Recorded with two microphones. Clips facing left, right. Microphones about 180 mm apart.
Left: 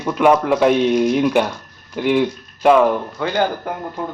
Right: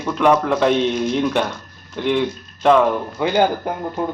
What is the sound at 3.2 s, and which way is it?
Speech, 15° right (ahead or behind).